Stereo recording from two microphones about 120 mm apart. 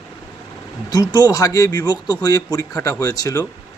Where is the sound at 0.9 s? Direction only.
35° left (ahead or behind).